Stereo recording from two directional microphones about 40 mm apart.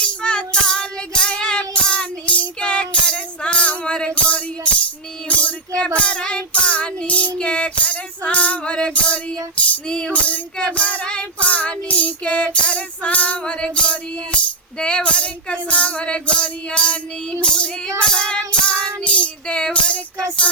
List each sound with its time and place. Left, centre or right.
0.0 s music: left
5.4 s child singing: left
9.8 s child singing: left
10.1 s music: left
10.6 s child singing: left
13.4 s child singing: left
19.5 s child singing: left